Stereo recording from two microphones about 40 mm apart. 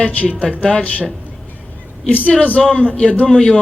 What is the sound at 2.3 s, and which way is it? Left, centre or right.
Speech, left.